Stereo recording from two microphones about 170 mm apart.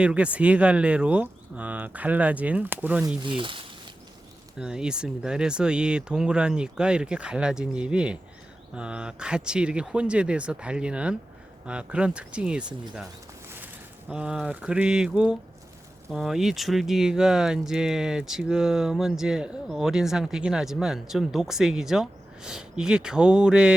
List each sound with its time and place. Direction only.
0.0 s speech: 5° right (ahead or behind)
3.2 s speech: 30° right (ahead or behind)
4.6 s speech: 5° right (ahead or behind)
14.1 s speech: 5° right (ahead or behind)